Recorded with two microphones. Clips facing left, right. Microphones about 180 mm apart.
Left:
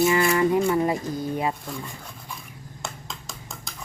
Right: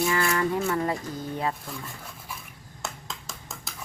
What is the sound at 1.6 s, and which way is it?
Speech, 5° right (ahead or behind).